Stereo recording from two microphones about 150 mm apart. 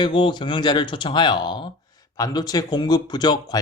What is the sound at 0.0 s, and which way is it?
Speech, 30° left (ahead or behind).